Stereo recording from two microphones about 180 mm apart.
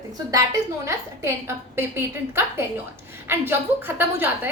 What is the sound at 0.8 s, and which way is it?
A woman's voice, 15° right (ahead or behind).